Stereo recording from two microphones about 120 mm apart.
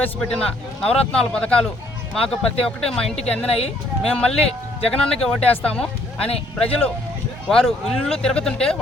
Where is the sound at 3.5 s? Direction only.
55° left (ahead or behind).